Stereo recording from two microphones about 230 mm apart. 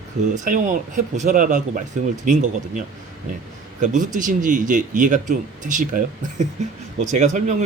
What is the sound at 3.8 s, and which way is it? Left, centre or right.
Speech, right.